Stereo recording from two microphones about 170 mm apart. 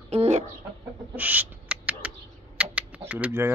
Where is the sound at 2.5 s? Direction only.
10° right (ahead or behind).